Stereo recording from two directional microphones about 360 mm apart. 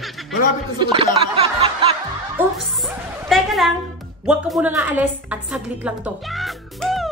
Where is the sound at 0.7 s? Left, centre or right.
Centre.